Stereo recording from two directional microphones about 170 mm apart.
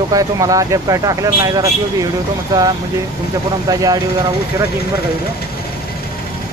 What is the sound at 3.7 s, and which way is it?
Speech, 20° right (ahead or behind).